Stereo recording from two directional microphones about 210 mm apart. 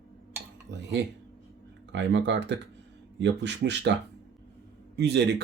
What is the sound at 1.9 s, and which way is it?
Speech, 55° right (ahead or behind).